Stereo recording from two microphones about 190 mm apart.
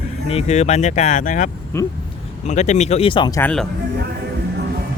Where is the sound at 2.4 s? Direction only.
40° left (ahead or behind); by 3.4 s 20° left (ahead or behind).